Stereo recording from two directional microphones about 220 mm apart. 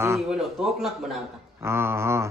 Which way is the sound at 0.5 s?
Centre (ahead or behind).